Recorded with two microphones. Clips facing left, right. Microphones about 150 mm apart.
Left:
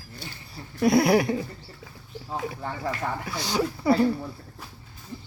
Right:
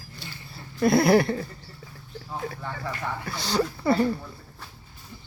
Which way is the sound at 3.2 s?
10° left (ahead or behind).